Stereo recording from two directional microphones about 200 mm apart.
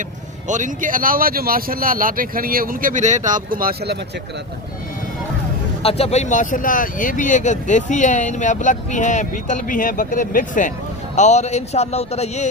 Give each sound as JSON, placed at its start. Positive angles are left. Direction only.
{"t": 0.4, "sound": "speech", "side_deg": -40}
{"t": 5.8, "sound": "speech", "side_deg": 30}